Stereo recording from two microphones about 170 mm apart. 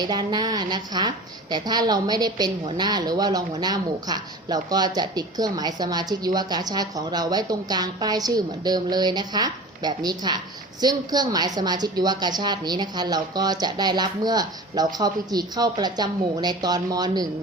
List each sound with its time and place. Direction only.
0.0 s a woman's voice: 25° right (ahead or behind)